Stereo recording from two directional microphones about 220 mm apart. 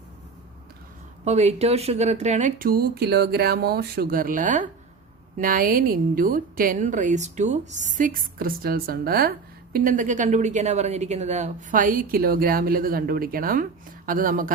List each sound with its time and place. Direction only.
1.2 s a woman's voice: 30° right (ahead or behind)